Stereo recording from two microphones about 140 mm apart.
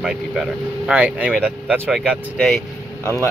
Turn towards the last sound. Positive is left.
turn(degrees=20)  # may be behind; listen again after turning